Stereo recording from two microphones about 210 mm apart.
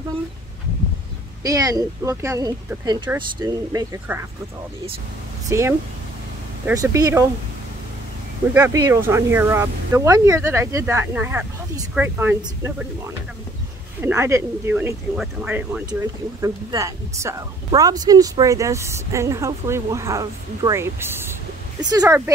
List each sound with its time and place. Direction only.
1.4 s speech: 15° right (ahead or behind)
5.5 s speech: 10° right (ahead or behind)
8.5 s speech: 15° right (ahead or behind)
14.0 s speech: 10° right (ahead or behind)